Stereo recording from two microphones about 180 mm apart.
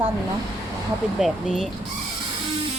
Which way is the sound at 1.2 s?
Centre (ahead or behind).